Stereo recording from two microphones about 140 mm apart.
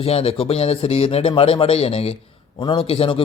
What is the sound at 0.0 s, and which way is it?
A man's voice, 45° left (ahead or behind).